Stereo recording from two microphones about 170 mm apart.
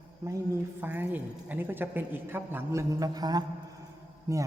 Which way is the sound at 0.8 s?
10° right (ahead or behind).